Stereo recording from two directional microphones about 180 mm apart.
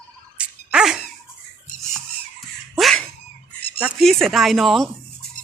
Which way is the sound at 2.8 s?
Centre (ahead or behind).